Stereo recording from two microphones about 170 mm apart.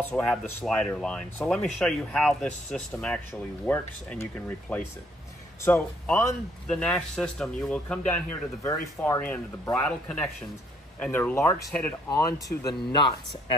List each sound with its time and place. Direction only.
0.0 s speech: 5° left (ahead or behind); by 13.6 s 25° left (ahead or behind)